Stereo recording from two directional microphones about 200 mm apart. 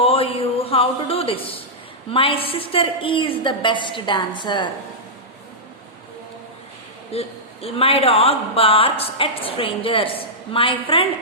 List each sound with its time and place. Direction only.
0.0 s a sound: 30° left (ahead or behind)
2.0 s speech: 25° left (ahead or behind)
7.1 s speech: 30° left (ahead or behind)